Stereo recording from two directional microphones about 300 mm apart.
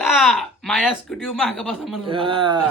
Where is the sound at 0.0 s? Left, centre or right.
Centre.